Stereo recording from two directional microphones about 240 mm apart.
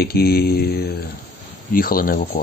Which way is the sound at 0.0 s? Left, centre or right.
Left.